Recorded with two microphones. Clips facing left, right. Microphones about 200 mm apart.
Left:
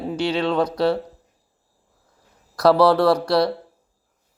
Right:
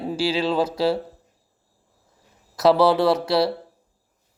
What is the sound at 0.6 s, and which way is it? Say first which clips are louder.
Speech: left 1 dB; 25° right (ahead or behind).